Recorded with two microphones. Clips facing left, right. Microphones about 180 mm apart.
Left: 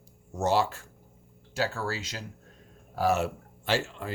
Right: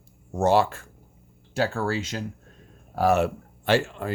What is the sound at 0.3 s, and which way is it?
Speech, 55° right (ahead or behind).